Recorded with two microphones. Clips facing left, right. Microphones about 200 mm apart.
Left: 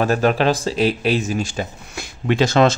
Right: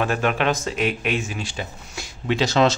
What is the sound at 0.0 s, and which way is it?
A man's voice, 35° left (ahead or behind).